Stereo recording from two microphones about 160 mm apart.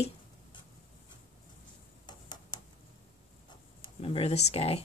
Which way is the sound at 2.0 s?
25° left (ahead or behind).